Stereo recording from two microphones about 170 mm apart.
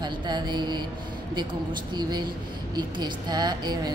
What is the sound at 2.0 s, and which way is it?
Mantra, 25° right (ahead or behind).